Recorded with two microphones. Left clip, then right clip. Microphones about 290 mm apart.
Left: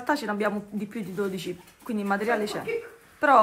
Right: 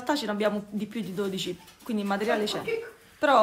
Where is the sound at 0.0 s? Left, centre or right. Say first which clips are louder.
Left 1 dB; centre.